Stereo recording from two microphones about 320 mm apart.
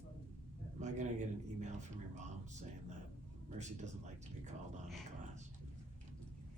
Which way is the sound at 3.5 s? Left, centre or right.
Right.